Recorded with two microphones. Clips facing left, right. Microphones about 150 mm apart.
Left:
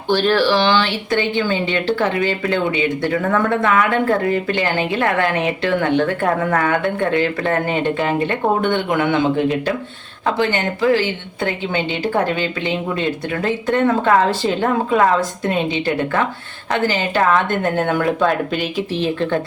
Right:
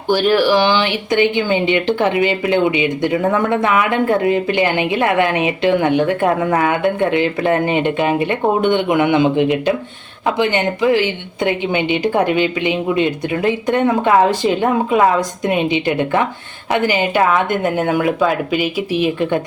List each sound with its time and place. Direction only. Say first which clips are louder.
0.1 s speech: right 2 dB; 10° right (ahead or behind)